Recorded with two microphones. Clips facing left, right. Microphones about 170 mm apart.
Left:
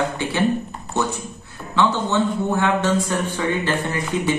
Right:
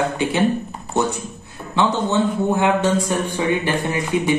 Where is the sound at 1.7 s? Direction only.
15° right (ahead or behind).